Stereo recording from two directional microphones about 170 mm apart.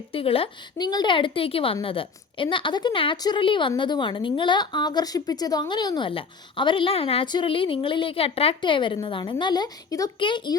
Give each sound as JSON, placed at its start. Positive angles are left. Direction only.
{"t": 0.1, "sound": "a woman's voice", "side_deg": 35}